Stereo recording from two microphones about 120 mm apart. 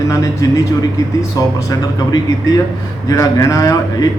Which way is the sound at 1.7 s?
30° left (ahead or behind).